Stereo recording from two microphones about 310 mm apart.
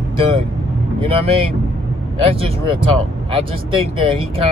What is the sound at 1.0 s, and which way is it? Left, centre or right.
Speech, centre.